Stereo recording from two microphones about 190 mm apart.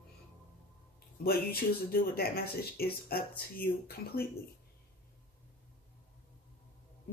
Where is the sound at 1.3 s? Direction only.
55° left (ahead or behind).